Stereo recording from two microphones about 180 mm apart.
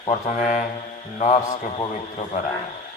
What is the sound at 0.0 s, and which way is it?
A man's voice, 35° left (ahead or behind).